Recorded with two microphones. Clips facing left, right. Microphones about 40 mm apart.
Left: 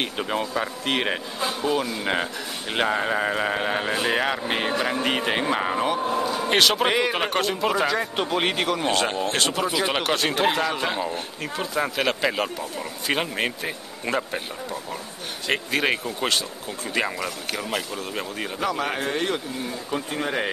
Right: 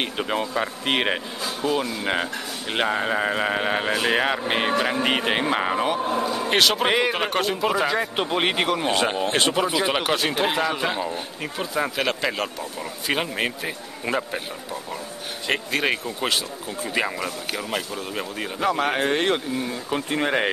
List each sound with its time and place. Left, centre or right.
0.0 s speech: centre
1.6 s speech: centre
9.2 s speech: right; by 18.7 s centre
18.7 s speech: right
19.0 s speech: right